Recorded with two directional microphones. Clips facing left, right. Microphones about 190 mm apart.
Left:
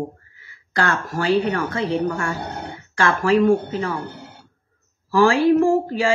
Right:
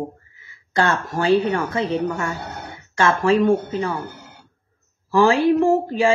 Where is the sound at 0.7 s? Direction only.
25° right (ahead or behind).